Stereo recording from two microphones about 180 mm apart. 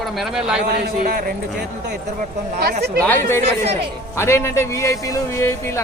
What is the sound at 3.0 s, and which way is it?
A man's voice, 10° left (ahead or behind).